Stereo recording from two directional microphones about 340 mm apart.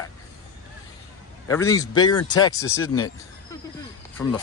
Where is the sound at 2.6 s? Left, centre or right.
Left.